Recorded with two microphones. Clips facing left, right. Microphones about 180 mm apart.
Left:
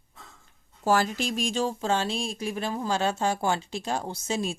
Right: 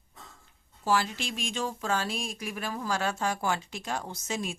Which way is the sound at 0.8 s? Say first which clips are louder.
Left 4 dB; 45° left (ahead or behind).